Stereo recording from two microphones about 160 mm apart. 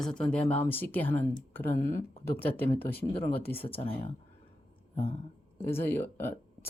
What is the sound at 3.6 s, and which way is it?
Speech, 35° left (ahead or behind).